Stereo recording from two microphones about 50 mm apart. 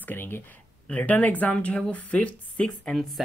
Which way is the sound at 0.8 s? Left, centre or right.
Left.